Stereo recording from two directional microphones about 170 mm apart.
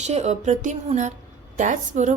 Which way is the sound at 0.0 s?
40° right (ahead or behind).